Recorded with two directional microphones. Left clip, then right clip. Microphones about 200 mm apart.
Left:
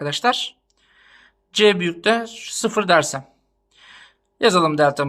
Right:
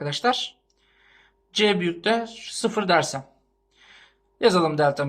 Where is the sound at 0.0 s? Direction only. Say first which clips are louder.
Left 4 dB; 30° left (ahead or behind).